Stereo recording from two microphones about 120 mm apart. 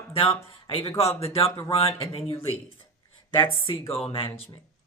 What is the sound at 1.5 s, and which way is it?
Speech, 25° left (ahead or behind).